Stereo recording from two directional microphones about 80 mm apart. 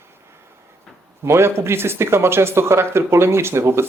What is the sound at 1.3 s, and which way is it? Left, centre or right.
Speech, right.